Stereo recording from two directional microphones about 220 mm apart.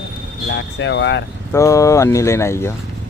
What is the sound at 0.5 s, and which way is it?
Speech, 55° left (ahead or behind).